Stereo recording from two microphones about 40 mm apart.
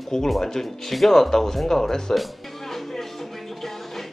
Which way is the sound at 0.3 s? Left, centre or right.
Centre.